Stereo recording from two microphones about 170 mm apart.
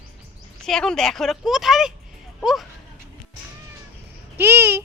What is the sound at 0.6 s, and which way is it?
Speech, 5° left (ahead or behind).